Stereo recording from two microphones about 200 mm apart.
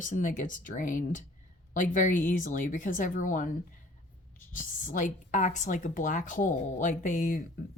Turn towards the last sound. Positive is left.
turn(degrees=40)  # may be behind; listen again after turning